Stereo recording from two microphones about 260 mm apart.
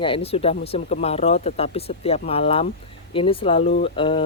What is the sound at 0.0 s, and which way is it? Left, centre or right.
A woman's voice, left.